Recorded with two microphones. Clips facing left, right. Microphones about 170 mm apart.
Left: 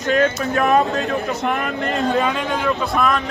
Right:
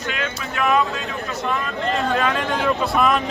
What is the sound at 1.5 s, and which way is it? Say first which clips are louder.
Speech: right 1 dB; 65° left (ahead or behind).